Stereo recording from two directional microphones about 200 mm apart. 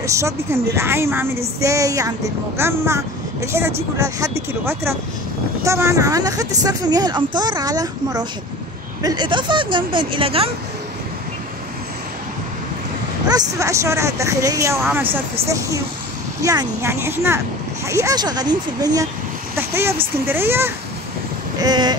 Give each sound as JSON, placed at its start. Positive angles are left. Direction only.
{"t": 0.0, "sound": "speech", "side_deg": -15}
{"t": 13.3, "sound": "speech", "side_deg": -15}